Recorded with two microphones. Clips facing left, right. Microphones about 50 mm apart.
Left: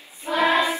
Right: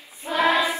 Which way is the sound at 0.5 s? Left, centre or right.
Left.